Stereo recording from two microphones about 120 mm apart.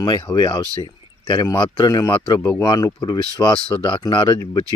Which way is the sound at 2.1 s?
45° left (ahead or behind).